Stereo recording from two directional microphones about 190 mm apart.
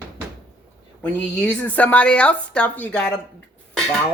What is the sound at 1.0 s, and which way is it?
Speech, 10° left (ahead or behind).